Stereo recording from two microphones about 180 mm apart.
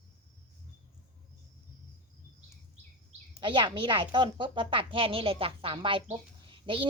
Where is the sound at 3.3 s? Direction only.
25° right (ahead or behind).